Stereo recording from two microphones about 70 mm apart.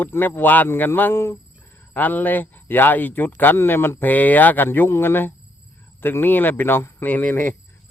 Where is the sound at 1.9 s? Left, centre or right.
Left.